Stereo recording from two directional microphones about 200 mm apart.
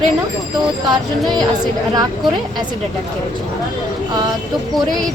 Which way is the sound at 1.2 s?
Centre (ahead or behind).